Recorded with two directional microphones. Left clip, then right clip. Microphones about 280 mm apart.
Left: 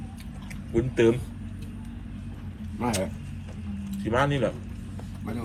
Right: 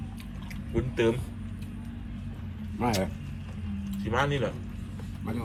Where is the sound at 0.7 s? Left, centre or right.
Centre.